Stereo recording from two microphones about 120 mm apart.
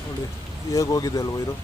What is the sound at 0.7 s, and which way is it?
Speech, 30° left (ahead or behind).